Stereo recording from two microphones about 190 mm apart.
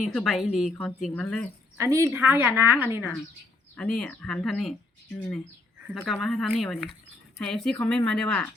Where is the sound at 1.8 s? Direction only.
15° right (ahead or behind).